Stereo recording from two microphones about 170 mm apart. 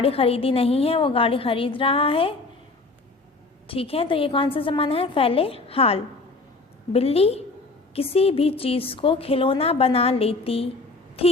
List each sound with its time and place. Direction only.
0.0 s a woman's voice: 35° left (ahead or behind)
3.7 s a woman's voice: 35° left (ahead or behind)